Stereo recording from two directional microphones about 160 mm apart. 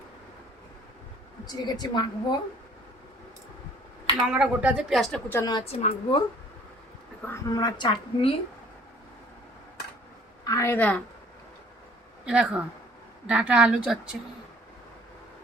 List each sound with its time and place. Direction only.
1.5 s a woman's voice: 25° left (ahead or behind)
4.3 s speech: 5° right (ahead or behind)
5.3 s a woman's voice: 20° left (ahead or behind)
5.8 s a woman's voice: 35° left (ahead or behind)
7.4 s a woman's voice: 25° left (ahead or behind)
10.4 s a woman's voice: 20° left (ahead or behind)
12.2 s speech: 5° right (ahead or behind)